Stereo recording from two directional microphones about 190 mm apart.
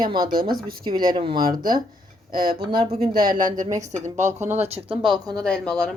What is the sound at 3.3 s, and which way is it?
Speech, 45° right (ahead or behind).